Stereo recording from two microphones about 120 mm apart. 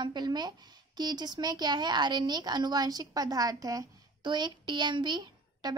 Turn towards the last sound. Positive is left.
turn(degrees=-35)  # may be behind; listen again after turning